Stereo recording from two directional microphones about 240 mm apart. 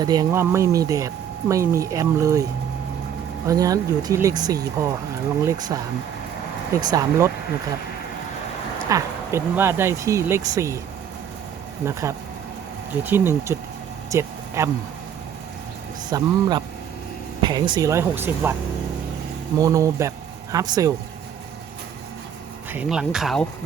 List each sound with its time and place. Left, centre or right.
0.0 s speech: centre
8.9 s speech: centre
11.9 s speech: centre
14.1 s a sound: centre
16.0 s speech: centre
19.5 s speech: centre
22.7 s speech: centre